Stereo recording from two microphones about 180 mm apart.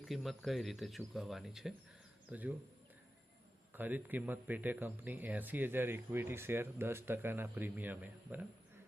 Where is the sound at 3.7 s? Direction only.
10° right (ahead or behind).